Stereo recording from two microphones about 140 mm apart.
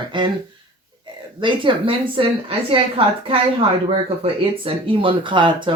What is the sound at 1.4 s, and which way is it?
Speech, 35° right (ahead or behind).